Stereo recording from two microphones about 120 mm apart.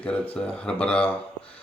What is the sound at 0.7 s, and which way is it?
Speech, 10° left (ahead or behind).